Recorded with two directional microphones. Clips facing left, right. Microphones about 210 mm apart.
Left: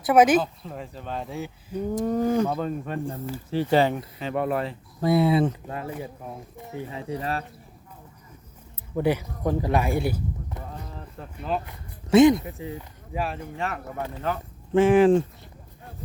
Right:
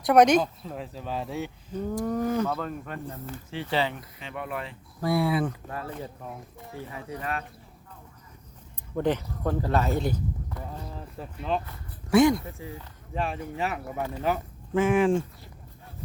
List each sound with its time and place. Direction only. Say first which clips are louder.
0.0 s speech: left 1 dB; 5° left (ahead or behind)
1.7 s speech: left 4 dB; 15° left (ahead or behind)
3.5 s speech: left 7 dB; 45° left (ahead or behind)
4.9 s speech: left 5 dB; 20° left (ahead or behind)
9.0 s speech: left 2 dB; 10° left (ahead or behind)
11.2 s speech: even; 5° left (ahead or behind)
11.6 s speech: left 1 dB; 20° left (ahead or behind)
13.1 s speech: even; centre (ahead or behind)
14.7 s speech: left 5 dB; 30° left (ahead or behind)